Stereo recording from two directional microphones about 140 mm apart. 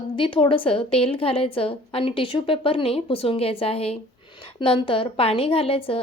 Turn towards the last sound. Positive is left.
turn(degrees=40)  # may be behind; listen again after turning